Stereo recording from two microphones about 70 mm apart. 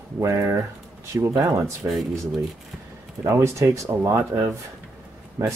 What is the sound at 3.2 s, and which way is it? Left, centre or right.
Speech, right.